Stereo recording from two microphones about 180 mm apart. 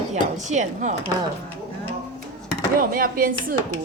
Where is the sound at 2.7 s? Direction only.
50° right (ahead or behind).